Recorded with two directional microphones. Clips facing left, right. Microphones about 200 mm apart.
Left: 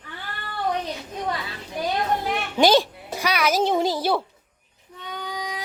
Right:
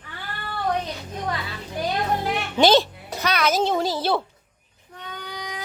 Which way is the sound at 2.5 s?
10° left (ahead or behind).